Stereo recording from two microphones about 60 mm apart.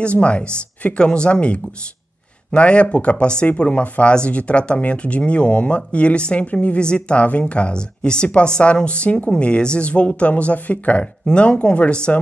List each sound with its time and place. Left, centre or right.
0.0 s speech: centre